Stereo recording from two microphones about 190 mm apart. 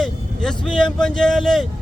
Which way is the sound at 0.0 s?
5° left (ahead or behind).